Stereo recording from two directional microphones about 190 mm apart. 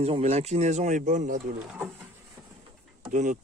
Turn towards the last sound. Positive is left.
turn(degrees=-40)  # may be behind; listen again after turning